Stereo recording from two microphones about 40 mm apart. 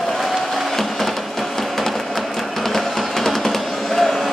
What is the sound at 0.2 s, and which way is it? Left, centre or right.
Music, centre.